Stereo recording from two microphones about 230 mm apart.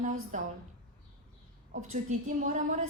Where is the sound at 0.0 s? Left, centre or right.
Right.